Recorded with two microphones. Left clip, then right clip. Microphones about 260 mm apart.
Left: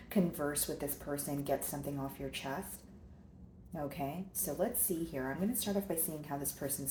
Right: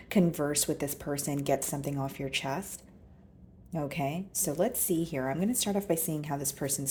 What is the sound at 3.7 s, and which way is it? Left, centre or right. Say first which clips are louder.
A woman's voice: right 7 dB; right.